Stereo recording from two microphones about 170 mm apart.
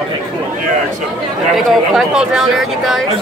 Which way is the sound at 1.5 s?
5° right (ahead or behind).